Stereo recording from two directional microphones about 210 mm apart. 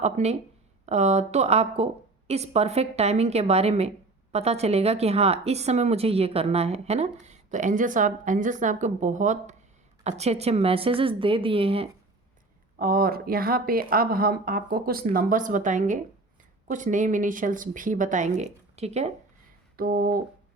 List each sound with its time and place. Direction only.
0.0 s a woman's voice: 30° right (ahead or behind)
12.8 s a woman's voice: 45° right (ahead or behind)
19.7 s speech: 45° right (ahead or behind)